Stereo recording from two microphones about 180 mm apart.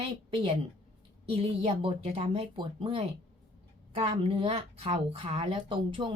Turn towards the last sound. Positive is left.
turn(degrees=-30)  # may be behind; listen again after turning